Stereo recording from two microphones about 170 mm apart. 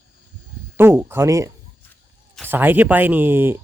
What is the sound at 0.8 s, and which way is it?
Speech, 15° right (ahead or behind).